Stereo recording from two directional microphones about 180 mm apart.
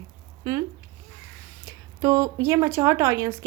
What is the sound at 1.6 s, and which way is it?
A woman's voice, 15° right (ahead or behind).